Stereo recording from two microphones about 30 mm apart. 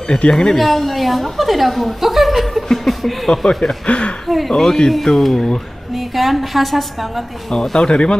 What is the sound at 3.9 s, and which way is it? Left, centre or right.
Speech, left.